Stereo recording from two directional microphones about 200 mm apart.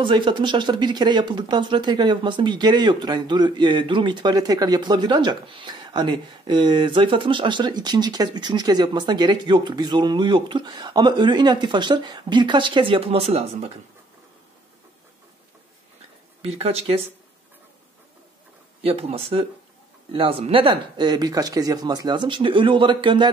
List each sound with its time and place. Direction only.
0.0 s speech: 25° right (ahead or behind)
16.4 s speech: 30° right (ahead or behind)
18.8 s speech: 30° right (ahead or behind)